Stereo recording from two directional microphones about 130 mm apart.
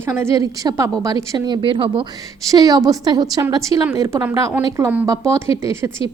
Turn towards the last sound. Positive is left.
turn(degrees=-20)  # may be behind; listen again after turning